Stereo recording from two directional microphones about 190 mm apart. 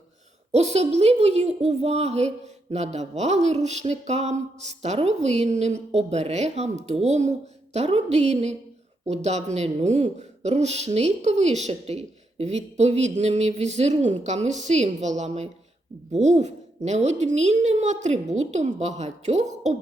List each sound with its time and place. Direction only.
0.5 s a woman's voice: 35° right (ahead or behind)